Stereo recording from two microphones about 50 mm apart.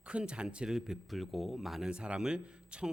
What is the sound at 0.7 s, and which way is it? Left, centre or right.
A man's voice, centre.